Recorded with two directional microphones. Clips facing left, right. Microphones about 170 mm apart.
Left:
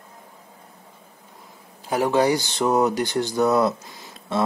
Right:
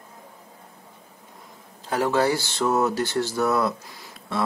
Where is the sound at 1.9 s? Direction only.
15° left (ahead or behind).